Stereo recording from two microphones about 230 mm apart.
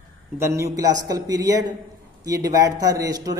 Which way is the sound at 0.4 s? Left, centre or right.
Centre.